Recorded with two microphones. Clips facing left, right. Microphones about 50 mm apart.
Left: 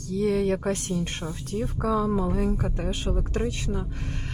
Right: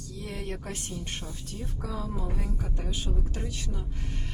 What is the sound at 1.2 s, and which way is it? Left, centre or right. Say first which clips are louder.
Speech: left 9 dB; left.